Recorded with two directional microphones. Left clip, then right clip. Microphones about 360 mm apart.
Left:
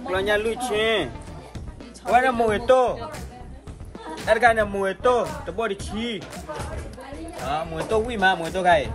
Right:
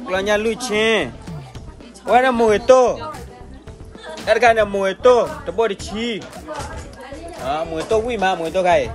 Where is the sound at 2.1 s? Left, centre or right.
Right.